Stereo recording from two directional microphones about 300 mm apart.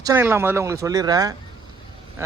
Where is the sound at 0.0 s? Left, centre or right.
Centre.